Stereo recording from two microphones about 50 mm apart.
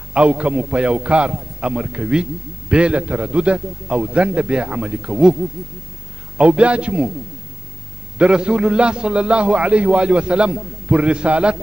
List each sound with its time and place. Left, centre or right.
0.1 s a man's voice: right
8.2 s a man's voice: centre